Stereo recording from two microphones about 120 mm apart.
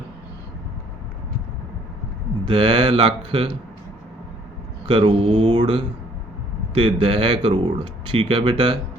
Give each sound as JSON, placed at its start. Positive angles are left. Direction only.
{"t": 2.4, "sound": "mantra", "side_deg": -45}
{"t": 4.9, "sound": "mantra", "side_deg": -50}